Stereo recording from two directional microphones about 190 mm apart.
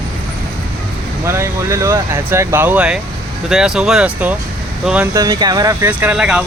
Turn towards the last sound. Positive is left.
turn(degrees=-5)  # may be behind; listen again after turning